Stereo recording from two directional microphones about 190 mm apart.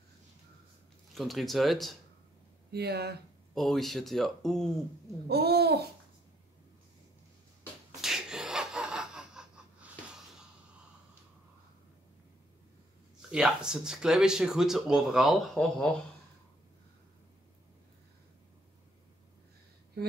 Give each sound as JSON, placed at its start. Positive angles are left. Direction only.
{"t": 1.1, "sound": "speech", "side_deg": 0}
{"t": 2.7, "sound": "speech", "side_deg": -60}
{"t": 3.5, "sound": "speech", "side_deg": 0}
{"t": 5.3, "sound": "speech", "side_deg": -55}
{"t": 8.0, "sound": "a sound", "side_deg": 0}
{"t": 13.3, "sound": "speech", "side_deg": -5}